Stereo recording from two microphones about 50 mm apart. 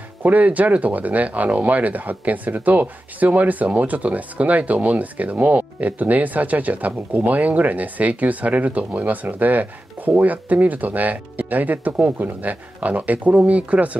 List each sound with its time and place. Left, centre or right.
0.2 s speech: right